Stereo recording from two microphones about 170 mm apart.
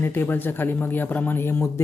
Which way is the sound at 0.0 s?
10° left (ahead or behind).